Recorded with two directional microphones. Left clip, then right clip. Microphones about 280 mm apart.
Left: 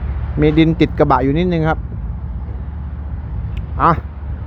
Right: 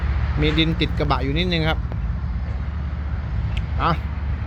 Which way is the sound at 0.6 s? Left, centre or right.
Left.